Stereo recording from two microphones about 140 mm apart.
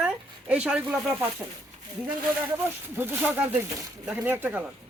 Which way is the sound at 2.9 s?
15° right (ahead or behind).